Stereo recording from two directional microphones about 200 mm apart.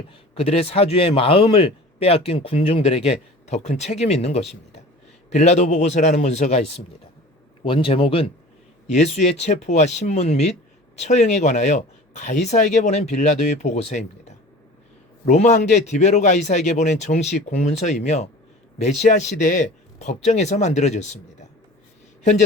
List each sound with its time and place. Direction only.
0.1 s a man's voice: 30° left (ahead or behind)